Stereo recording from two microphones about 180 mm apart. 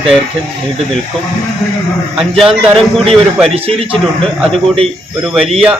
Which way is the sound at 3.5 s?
35° right (ahead or behind).